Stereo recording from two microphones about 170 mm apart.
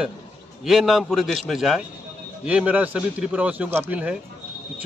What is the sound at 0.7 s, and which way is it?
A man's voice, centre (ahead or behind).